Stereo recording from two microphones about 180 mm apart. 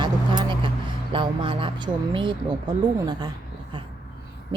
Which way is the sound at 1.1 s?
30° right (ahead or behind).